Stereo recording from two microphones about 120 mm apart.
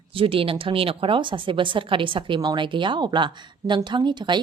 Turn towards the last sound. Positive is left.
turn(degrees=-40)  # may be behind; listen again after turning